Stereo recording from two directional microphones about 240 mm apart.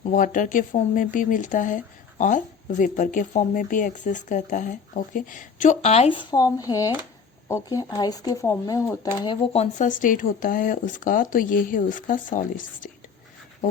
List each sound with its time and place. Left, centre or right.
0.1 s speech: left